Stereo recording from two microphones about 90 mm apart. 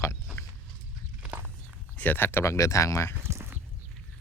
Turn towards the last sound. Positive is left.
turn(degrees=-30)  # may be behind; listen again after turning